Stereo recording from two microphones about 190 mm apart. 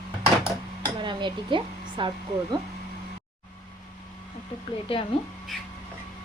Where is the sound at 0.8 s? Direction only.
25° right (ahead or behind).